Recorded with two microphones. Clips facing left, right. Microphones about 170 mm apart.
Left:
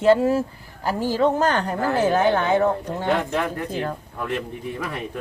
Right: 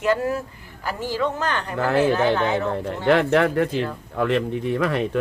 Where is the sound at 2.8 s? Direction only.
80° right.